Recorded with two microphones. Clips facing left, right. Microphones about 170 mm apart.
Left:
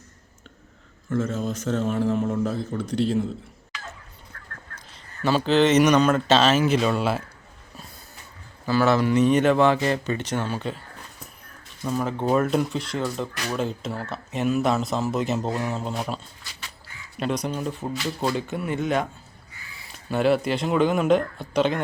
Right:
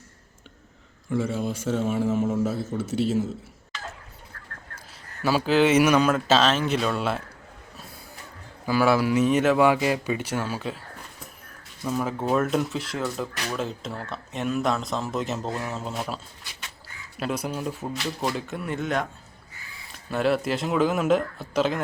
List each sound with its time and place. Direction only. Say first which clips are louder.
1.1 s a man's voice: left 1 dB; 10° right (ahead or behind)
5.2 s speech: left 1 dB; 10° right (ahead or behind)
8.6 s a man's voice: left 1 dB; 10° right (ahead or behind)
11.8 s a man's voice: left 1 dB; centre (ahead or behind)
20.1 s speech: left 2 dB; centre (ahead or behind)